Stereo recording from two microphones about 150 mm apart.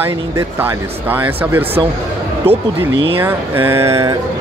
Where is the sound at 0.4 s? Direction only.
15° right (ahead or behind).